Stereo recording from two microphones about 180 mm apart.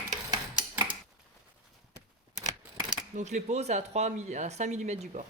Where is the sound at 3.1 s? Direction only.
40° right (ahead or behind).